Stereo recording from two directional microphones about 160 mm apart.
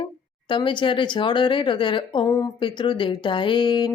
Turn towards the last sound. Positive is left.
turn(degrees=30)  # may be behind; listen again after turning